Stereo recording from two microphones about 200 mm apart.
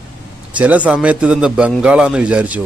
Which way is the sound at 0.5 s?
5° right (ahead or behind).